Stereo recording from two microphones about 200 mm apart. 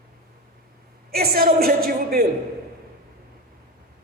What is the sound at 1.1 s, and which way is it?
A woman's voice, 50° right (ahead or behind).